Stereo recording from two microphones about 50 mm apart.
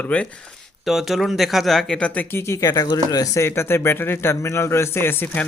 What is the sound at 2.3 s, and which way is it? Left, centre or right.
Speech, left.